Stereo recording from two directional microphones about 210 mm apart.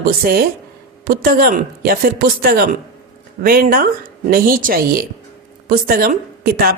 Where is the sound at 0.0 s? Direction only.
45° right (ahead or behind).